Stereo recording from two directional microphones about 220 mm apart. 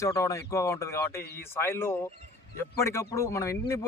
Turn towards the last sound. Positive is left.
turn(degrees=15)  # may be behind; listen again after turning